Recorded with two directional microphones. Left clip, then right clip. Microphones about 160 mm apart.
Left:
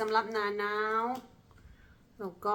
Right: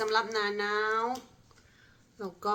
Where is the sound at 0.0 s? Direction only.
15° left (ahead or behind).